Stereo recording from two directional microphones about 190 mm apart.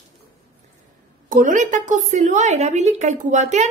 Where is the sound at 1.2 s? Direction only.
45° right (ahead or behind).